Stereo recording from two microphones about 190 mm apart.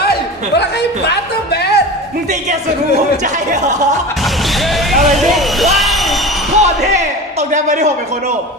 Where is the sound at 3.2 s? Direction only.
40° right (ahead or behind).